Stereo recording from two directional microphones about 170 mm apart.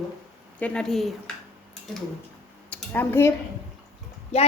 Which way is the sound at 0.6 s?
5° left (ahead or behind).